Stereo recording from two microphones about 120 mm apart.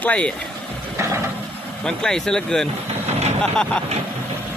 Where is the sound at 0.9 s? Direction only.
20° right (ahead or behind).